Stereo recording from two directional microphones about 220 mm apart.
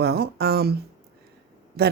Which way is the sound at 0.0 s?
45° right (ahead or behind).